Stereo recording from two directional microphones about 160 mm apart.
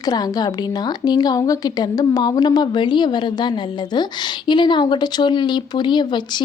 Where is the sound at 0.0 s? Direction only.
25° left (ahead or behind).